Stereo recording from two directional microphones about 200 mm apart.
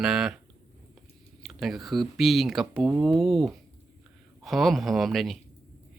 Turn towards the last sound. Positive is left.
turn(degrees=0)  # may be behind; listen again after turning